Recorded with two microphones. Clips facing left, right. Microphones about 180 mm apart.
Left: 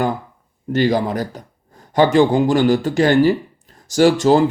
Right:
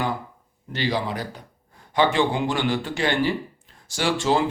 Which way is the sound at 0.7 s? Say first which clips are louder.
Left 9 dB; 45° left (ahead or behind).